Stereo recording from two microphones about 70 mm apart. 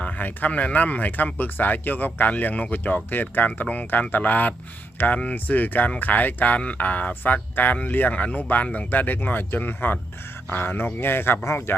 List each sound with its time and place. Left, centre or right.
0.0 s speech: left